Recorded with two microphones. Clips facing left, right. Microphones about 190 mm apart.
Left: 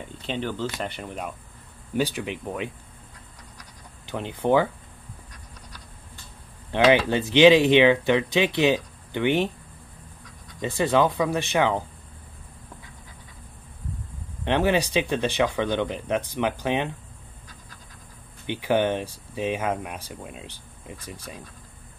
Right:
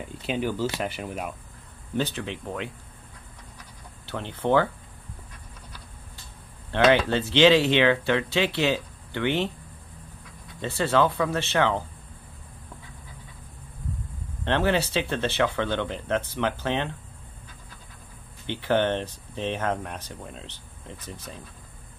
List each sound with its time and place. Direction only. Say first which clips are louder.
0.0 s speech: right 2 dB; 10° right (ahead or behind)
2.0 s speech: left 2 dB; 10° left (ahead or behind)
4.0 s speech: left 2 dB; 15° left (ahead or behind)
6.7 s speech: left 1 dB; 15° left (ahead or behind)
10.6 s speech: left 1 dB; 15° left (ahead or behind)
14.4 s speech: left 2 dB; 15° left (ahead or behind)
18.5 s speech: left 1 dB; 10° left (ahead or behind)